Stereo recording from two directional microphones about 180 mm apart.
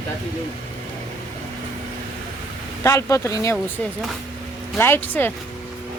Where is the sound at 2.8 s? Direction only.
15° left (ahead or behind).